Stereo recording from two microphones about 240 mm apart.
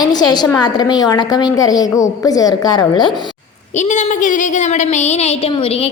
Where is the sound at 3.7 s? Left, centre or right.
Left.